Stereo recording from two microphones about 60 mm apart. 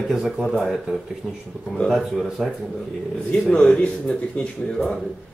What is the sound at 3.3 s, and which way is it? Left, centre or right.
A man's voice, centre.